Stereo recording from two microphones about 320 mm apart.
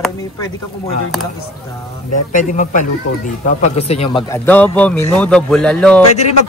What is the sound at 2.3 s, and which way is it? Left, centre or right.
Speech, left.